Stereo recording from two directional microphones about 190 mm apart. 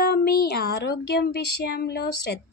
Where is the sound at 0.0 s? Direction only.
55° left (ahead or behind).